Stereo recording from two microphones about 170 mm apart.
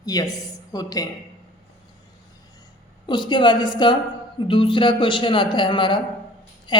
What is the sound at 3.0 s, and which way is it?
A woman's voice, 25° left (ahead or behind).